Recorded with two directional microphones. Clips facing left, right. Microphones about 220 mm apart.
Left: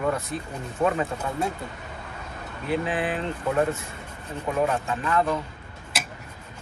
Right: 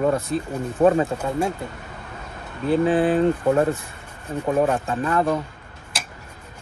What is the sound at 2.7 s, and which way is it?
Speech, 35° right (ahead or behind).